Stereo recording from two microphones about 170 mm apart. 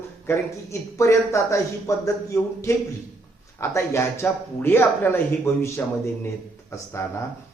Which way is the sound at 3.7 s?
15° left (ahead or behind).